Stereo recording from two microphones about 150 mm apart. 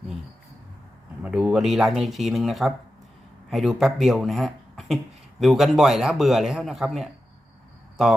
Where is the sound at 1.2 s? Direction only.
5° right (ahead or behind).